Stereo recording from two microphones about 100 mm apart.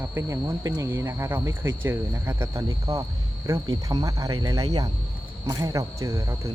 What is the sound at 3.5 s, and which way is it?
Cricket, 35° right (ahead or behind).